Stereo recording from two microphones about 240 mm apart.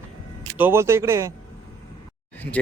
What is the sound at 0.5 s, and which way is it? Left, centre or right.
Speech, centre.